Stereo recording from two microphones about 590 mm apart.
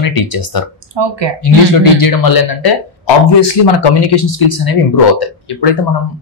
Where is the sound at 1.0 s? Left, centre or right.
Right.